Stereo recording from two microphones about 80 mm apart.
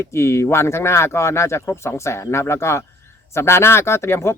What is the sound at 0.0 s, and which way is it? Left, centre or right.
Speech, left.